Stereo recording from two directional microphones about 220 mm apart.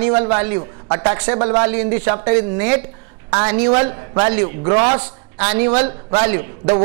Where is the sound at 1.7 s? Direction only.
15° right (ahead or behind).